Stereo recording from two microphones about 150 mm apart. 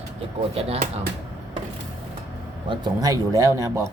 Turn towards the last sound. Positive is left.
turn(degrees=-20)  # may be behind; listen again after turning